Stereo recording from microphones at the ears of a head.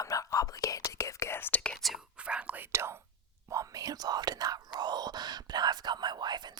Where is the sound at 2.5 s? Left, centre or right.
Right.